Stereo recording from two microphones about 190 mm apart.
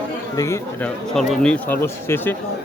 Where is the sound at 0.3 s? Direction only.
15° left (ahead or behind).